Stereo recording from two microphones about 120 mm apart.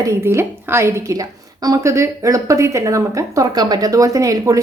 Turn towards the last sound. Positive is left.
turn(degrees=-30)  # may be behind; listen again after turning